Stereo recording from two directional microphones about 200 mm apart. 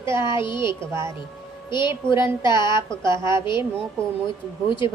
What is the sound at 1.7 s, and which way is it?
A woman's voice, 25° left (ahead or behind).